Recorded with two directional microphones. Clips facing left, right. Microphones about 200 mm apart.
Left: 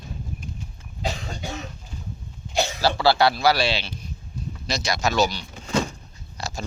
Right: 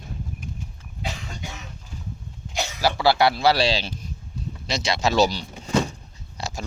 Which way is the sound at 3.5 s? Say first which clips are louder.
Right 2 dB; 40° right (ahead or behind).